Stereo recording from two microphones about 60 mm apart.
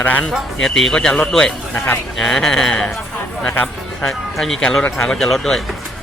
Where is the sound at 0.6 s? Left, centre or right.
Centre.